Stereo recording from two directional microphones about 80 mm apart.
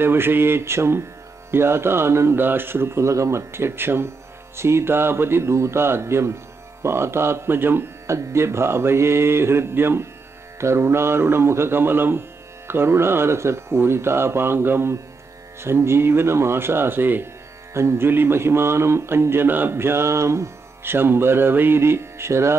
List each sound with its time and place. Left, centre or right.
0.0 s music: right